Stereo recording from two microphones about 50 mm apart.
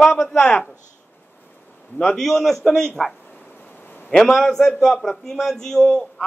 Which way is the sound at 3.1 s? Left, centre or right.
Left.